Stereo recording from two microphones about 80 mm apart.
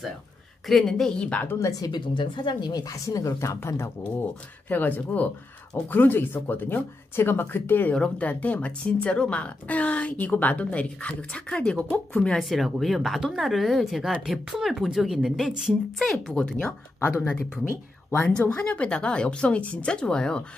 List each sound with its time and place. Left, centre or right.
0.7 s speech: centre
1.6 s speech: left
2.0 s speech: left
4.6 s speech: left
7.9 s a woman's voice: centre
16.0 s speech: centre
17.0 s speech: left